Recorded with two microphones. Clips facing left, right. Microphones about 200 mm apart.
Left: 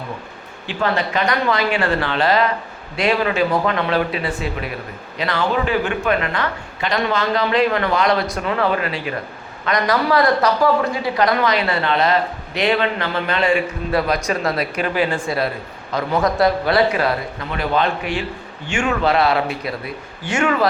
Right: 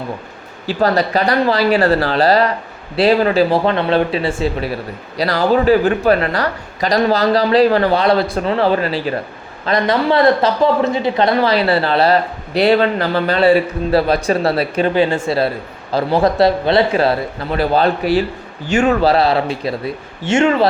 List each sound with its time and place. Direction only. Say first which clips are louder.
0.7 s a man's voice: right 6 dB; 40° right (ahead or behind)